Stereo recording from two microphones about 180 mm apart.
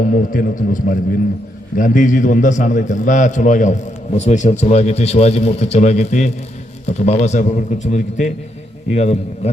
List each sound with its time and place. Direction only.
0.0 s a man's voice: 50° left (ahead or behind)